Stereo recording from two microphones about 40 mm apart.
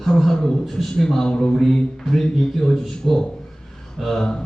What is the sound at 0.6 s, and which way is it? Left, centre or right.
A man's voice, centre.